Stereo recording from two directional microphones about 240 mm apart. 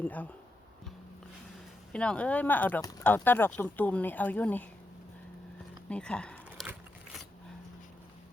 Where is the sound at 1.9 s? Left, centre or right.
Centre.